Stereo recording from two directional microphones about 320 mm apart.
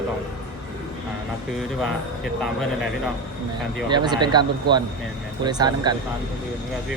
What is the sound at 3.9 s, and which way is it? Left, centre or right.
Speech, centre.